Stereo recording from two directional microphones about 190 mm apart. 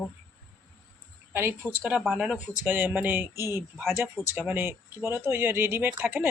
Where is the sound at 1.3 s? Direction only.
10° right (ahead or behind).